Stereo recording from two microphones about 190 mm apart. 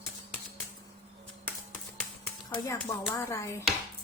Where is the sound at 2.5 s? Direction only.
10° left (ahead or behind).